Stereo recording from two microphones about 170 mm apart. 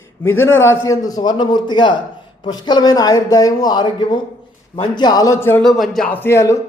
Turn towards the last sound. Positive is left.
turn(degrees=15)  # may be behind; listen again after turning